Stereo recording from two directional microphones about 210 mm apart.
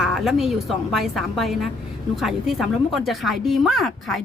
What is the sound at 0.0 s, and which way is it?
Speech, centre (ahead or behind).